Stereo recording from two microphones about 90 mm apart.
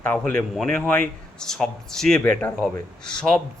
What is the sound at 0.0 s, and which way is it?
A man's voice, 15° left (ahead or behind).